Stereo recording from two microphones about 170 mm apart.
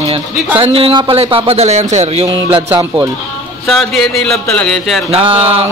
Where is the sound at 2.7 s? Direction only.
15° right (ahead or behind).